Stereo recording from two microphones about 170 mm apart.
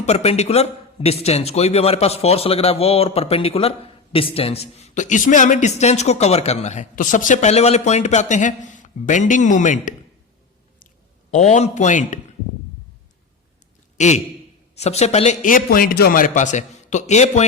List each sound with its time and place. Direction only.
0.0 s a man's voice: 40° left (ahead or behind)
11.3 s a man's voice: 40° left (ahead or behind)
14.0 s a man's voice: 45° left (ahead or behind)